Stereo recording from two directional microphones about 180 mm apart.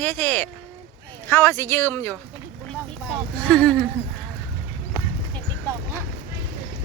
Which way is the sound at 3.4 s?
5° left (ahead or behind).